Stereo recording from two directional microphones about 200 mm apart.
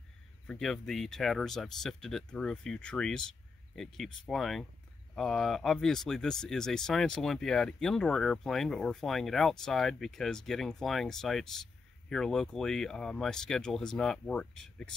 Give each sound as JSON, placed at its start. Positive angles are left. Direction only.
{"t": 0.5, "sound": "speech", "side_deg": 5}